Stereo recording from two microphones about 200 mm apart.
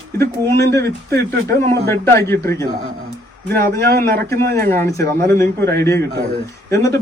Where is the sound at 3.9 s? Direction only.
50° right (ahead or behind).